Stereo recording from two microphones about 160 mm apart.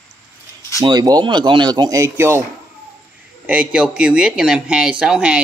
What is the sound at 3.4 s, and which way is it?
Speech, 10° right (ahead or behind).